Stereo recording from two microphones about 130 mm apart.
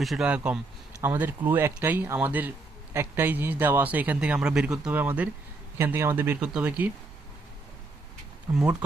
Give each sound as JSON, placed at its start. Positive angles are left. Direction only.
{"t": 0.0, "sound": "speech", "side_deg": 0}
{"t": 8.5, "sound": "speech", "side_deg": -20}